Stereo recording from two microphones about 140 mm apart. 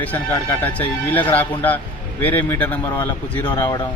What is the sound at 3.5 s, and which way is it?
Speech, 30° left (ahead or behind).